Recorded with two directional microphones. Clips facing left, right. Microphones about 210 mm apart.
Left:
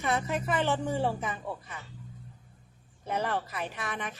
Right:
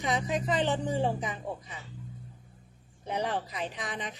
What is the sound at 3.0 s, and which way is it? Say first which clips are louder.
Speech: even; 15° right (ahead or behind).